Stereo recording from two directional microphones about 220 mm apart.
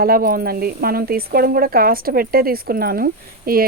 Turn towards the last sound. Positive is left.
turn(degrees=-40)  # may be behind; listen again after turning